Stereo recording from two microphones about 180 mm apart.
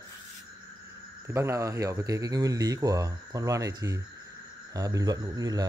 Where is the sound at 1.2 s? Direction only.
15° right (ahead or behind).